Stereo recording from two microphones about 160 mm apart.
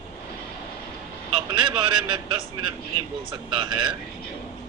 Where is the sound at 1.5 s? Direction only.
30° right (ahead or behind).